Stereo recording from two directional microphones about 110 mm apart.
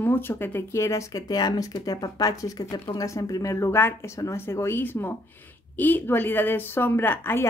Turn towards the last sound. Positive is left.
turn(degrees=20)  # may be behind; listen again after turning